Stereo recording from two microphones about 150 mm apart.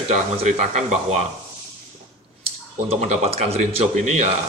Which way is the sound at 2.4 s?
40° right (ahead or behind).